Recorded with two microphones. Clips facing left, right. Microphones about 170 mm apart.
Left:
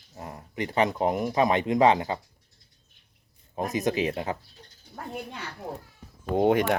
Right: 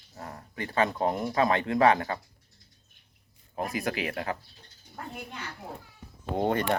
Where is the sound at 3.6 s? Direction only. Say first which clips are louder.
Left 5 dB; 20° left (ahead or behind).